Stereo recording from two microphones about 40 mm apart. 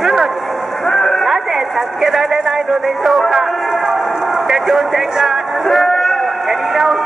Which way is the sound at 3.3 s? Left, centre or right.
Centre.